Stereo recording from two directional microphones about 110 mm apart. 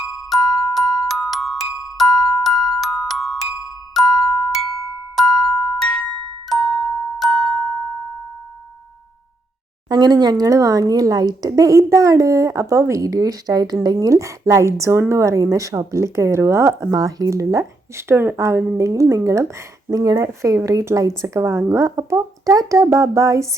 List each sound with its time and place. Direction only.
0.3 s glockenspiel: centre (ahead or behind)
3.9 s music: centre (ahead or behind)
5.1 s glockenspiel: centre (ahead or behind)
9.9 s speech: 40° right (ahead or behind)